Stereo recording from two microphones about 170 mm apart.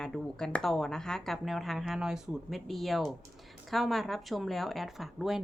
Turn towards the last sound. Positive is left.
turn(degrees=0)  # may be behind; listen again after turning